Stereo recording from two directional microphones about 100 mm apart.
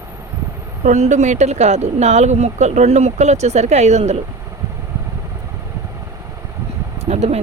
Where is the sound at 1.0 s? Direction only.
90° right.